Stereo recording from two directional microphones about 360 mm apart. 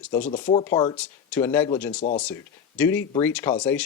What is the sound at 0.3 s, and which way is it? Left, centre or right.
Speech, centre.